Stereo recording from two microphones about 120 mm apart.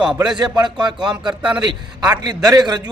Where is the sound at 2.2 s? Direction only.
35° right (ahead or behind).